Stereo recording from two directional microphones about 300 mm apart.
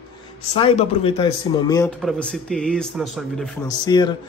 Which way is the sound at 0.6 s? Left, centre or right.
Centre.